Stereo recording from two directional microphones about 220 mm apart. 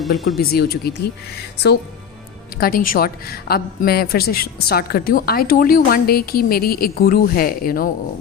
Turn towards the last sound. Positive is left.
turn(degrees=40)  # may be behind; listen again after turning